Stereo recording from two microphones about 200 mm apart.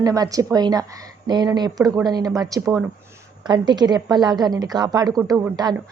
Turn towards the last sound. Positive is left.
turn(degrees=-20)  # may be behind; listen again after turning